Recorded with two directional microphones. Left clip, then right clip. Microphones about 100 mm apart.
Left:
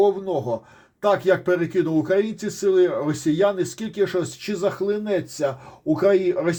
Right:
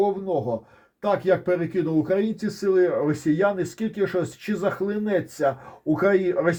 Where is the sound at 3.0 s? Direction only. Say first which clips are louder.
Left 1 dB; 35° right (ahead or behind).